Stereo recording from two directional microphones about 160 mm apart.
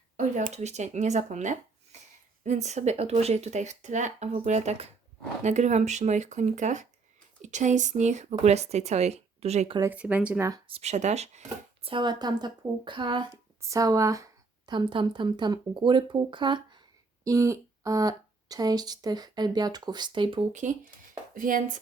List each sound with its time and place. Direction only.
0.2 s speech: 50° right (ahead or behind)
9.9 s speech: 10° right (ahead or behind)
10.7 s speech: 40° right (ahead or behind)
11.4 s speech: 30° right (ahead or behind)
20.5 s speech: 50° right (ahead or behind)